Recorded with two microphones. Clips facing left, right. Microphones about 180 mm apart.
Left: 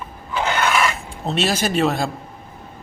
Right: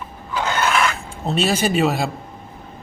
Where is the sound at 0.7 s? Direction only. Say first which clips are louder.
Even; centre (ahead or behind).